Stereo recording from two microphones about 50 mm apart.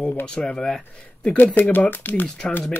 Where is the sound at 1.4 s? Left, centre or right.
Left.